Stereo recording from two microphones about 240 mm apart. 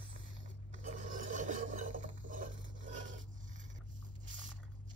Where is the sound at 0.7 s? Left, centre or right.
Right.